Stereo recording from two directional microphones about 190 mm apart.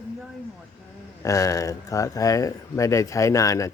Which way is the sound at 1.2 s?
15° left (ahead or behind).